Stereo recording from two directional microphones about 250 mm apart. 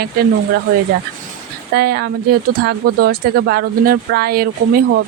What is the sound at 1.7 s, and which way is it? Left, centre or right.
Speech, right.